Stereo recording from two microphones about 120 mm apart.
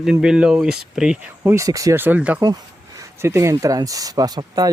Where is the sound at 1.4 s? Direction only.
25° right (ahead or behind).